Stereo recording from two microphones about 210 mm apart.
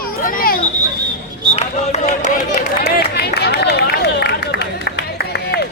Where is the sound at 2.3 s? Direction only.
40° left (ahead or behind).